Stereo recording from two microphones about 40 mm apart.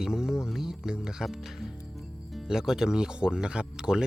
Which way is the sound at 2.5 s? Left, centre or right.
Centre.